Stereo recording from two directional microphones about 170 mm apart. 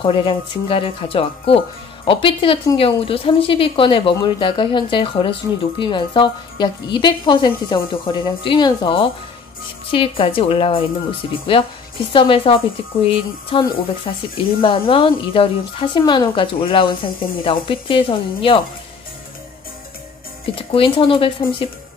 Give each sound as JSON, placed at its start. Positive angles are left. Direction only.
{"t": 0.0, "sound": "a woman's voice", "side_deg": 30}
{"t": 20.5, "sound": "a woman's voice", "side_deg": 30}